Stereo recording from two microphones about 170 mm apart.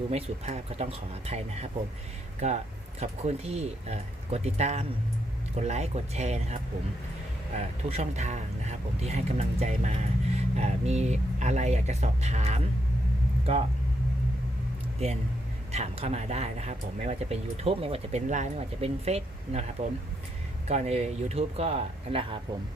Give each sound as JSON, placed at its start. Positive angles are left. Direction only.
{"t": 0.1, "sound": "speech", "side_deg": -40}
{"t": 14.9, "sound": "speech", "side_deg": -35}